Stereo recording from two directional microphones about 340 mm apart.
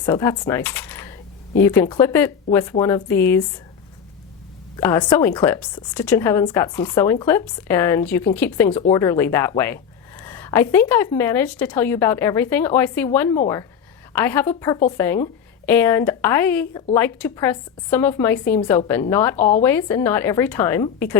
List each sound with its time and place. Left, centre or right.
0.0 s speech: centre
4.8 s a woman's voice: centre
19.4 s a woman's voice: left
19.6 s speech: centre